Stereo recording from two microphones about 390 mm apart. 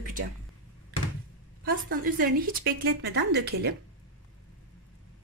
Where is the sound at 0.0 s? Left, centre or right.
Right.